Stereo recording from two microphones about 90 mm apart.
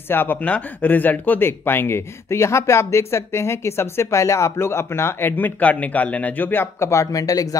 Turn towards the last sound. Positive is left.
turn(degrees=40)  # may be behind; listen again after turning